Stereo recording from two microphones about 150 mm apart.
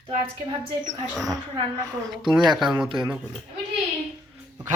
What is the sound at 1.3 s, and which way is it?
Speech, 25° right (ahead or behind).